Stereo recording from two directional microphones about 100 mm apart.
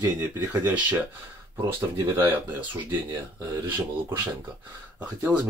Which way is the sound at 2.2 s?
20° right (ahead or behind).